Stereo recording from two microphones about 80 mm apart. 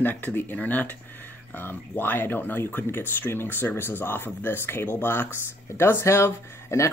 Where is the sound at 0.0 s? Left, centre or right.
Left.